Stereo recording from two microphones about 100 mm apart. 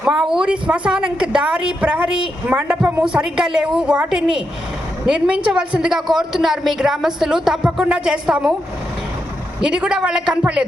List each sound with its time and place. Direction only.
0.1 s a woman's voice: centre (ahead or behind)
9.6 s a woman's voice: 10° right (ahead or behind)